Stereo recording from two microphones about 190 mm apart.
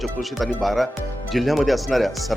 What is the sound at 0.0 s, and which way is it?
Speech, centre (ahead or behind).